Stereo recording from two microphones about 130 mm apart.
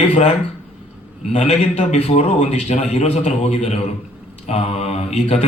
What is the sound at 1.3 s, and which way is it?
A man's voice, 60° left (ahead or behind).